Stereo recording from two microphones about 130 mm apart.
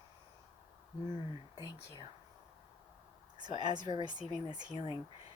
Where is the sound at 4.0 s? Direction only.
35° right (ahead or behind).